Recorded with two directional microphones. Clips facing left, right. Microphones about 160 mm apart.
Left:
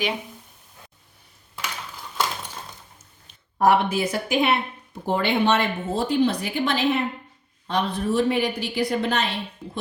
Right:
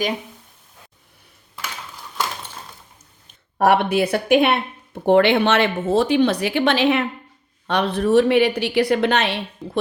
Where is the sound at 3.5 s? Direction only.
65° right (ahead or behind).